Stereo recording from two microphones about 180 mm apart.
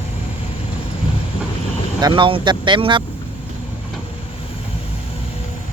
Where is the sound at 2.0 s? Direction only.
30° right (ahead or behind).